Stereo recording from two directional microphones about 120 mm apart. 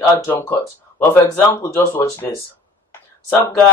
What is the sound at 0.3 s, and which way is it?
Speech, 15° left (ahead or behind).